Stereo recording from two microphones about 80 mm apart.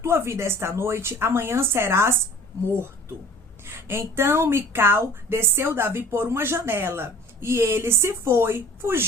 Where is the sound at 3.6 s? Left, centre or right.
Right.